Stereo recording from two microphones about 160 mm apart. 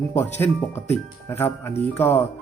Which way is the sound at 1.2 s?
15° left (ahead or behind).